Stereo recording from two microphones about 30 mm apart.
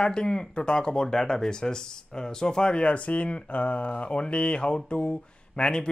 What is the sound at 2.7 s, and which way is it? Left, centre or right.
Speech, left.